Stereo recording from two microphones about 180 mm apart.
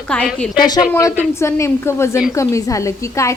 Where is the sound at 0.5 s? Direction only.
25° left (ahead or behind).